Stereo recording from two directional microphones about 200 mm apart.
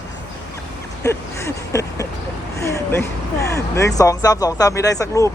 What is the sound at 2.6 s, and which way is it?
Speech, 15° left (ahead or behind).